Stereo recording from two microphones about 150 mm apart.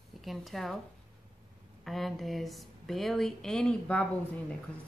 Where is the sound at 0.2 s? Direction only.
Centre (ahead or behind).